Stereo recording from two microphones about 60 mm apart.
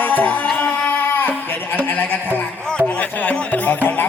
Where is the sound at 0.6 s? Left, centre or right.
Left.